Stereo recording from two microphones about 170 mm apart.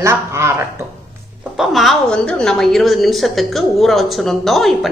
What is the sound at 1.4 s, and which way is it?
A woman's voice, centre (ahead or behind).